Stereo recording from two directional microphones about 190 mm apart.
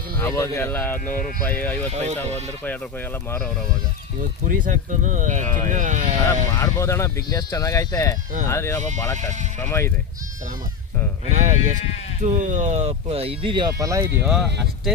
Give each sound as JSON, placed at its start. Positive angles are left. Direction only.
{"t": 0.2, "sound": "speech", "side_deg": 15}
{"t": 1.0, "sound": "speech", "side_deg": 45}
{"t": 1.6, "sound": "speech", "side_deg": 10}
{"t": 1.9, "sound": "speech", "side_deg": -35}
{"t": 4.2, "sound": "speech", "side_deg": -45}
{"t": 6.6, "sound": "speech", "side_deg": 15}
{"t": 11.3, "sound": "speech", "side_deg": -40}